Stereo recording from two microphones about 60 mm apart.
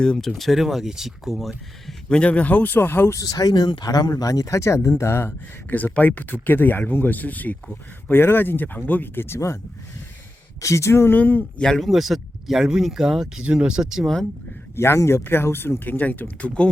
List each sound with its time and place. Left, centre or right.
0.0 s speech: centre
2.0 s speech: centre; by 3.2 s left
3.2 s speech: left
6.0 s speech: left
10.6 s speech: left
11.1 s speech: left
11.8 s speech: centre
13.4 s speech: centre
14.8 s speech: left